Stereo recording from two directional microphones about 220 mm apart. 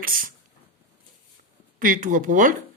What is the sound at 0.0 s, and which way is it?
Speech, 40° right (ahead or behind).